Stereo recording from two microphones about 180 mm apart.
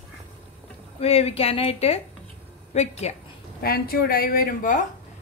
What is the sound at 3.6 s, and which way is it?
Speech, 55° left (ahead or behind).